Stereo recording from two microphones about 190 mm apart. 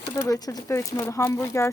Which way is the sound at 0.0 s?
15° left (ahead or behind).